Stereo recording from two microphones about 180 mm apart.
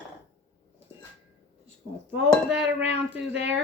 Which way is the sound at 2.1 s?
75° right (ahead or behind).